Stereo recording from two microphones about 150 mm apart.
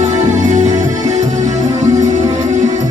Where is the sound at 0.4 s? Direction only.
55° right (ahead or behind).